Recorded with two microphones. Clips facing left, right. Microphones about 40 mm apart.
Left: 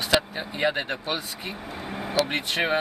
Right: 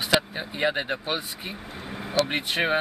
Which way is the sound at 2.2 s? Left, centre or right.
Centre.